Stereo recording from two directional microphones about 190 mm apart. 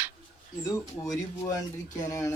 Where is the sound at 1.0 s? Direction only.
20° left (ahead or behind).